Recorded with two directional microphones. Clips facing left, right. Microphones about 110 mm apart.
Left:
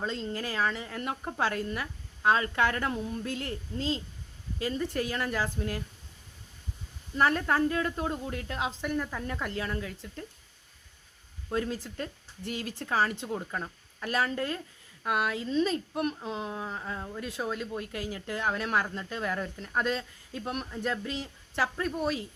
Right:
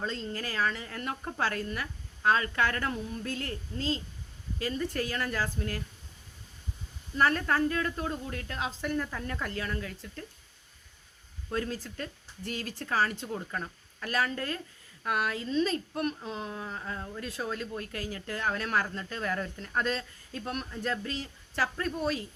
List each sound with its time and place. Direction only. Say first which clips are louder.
0.0 s a woman's voice: left 2 dB; 20° left (ahead or behind)
7.2 s a woman's voice: left 1 dB; 15° left (ahead or behind)
11.4 s a woman's voice: left 2 dB; 20° left (ahead or behind)